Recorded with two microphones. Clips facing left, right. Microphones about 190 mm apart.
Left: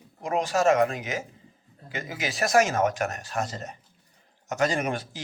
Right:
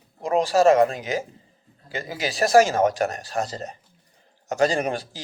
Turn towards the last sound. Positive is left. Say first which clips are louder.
# right 3 dB
turn(degrees=-35)  # may be behind; listen again after turning